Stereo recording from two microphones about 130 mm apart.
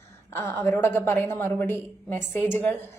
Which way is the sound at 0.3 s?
20° left (ahead or behind).